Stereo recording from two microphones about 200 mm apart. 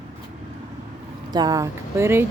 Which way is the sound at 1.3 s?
20° right (ahead or behind).